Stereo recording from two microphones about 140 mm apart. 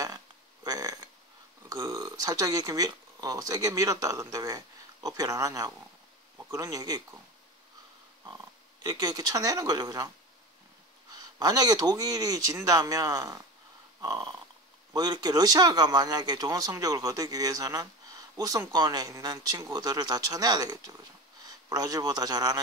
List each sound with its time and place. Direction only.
0.7 s a sound: 25° right (ahead or behind)
1.7 s speech: 25° right (ahead or behind)
8.8 s a man's voice: 25° right (ahead or behind)